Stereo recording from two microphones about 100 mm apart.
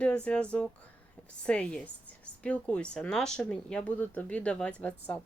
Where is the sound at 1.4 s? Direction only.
10° left (ahead or behind).